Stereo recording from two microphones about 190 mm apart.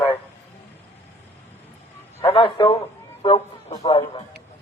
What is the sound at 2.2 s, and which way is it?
Speech, 30° left (ahead or behind).